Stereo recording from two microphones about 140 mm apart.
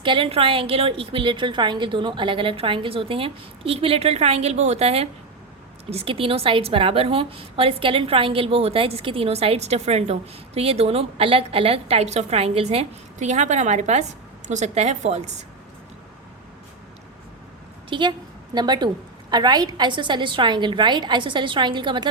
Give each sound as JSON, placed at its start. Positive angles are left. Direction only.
{"t": 0.0, "sound": "a woman's voice", "side_deg": -40}
{"t": 17.8, "sound": "a woman's voice", "side_deg": -35}